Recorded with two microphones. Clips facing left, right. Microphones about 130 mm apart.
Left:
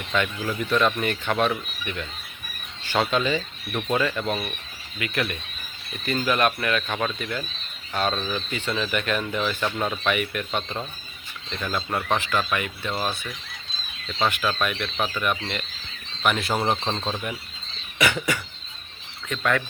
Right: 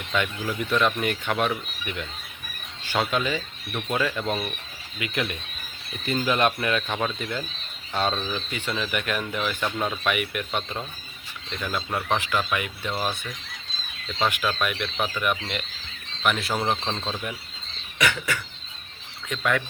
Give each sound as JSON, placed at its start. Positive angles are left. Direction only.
{"t": 0.1, "sound": "speech", "side_deg": -5}
{"t": 6.8, "sound": "speech", "side_deg": -10}
{"t": 7.2, "sound": "speech", "side_deg": -20}
{"t": 8.1, "sound": "speech", "side_deg": -5}
{"t": 12.1, "sound": "speech", "side_deg": -10}
{"t": 14.1, "sound": "speech", "side_deg": -10}
{"t": 14.9, "sound": "speech", "side_deg": 10}
{"t": 15.2, "sound": "speech", "side_deg": -10}
{"t": 16.2, "sound": "speech", "side_deg": 0}
{"t": 16.9, "sound": "speech", "side_deg": 20}
{"t": 17.9, "sound": "cough", "side_deg": 10}
{"t": 19.4, "sound": "speech", "side_deg": -5}